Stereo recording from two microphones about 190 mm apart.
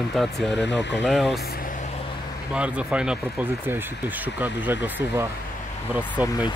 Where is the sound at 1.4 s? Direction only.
50° left (ahead or behind).